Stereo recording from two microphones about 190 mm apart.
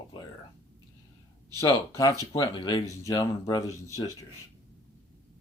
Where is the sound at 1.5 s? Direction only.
15° left (ahead or behind).